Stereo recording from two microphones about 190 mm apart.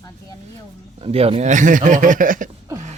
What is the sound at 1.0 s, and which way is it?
Speech, 30° right (ahead or behind).